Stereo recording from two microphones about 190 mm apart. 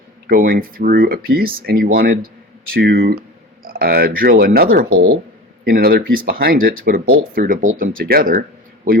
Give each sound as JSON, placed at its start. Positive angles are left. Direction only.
{"t": 0.3, "sound": "speech", "side_deg": -50}